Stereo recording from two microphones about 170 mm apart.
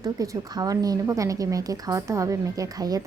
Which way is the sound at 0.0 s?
20° right (ahead or behind).